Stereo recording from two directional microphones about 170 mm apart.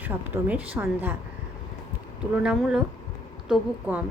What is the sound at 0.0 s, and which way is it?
A woman's voice, 10° right (ahead or behind).